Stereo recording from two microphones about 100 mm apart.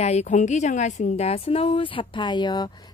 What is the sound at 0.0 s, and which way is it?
A woman's voice, 90° left.